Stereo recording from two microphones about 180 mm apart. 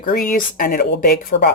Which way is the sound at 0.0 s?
50° left (ahead or behind).